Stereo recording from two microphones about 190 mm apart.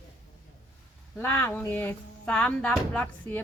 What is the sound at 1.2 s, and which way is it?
Speech, 10° left (ahead or behind).